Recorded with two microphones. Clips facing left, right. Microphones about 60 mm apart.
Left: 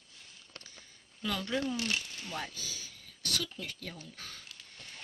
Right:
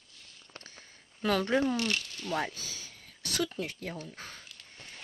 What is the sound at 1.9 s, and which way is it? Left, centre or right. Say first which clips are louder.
Speech: right 3 dB; centre.